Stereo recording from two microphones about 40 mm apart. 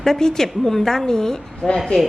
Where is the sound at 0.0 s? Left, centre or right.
Centre.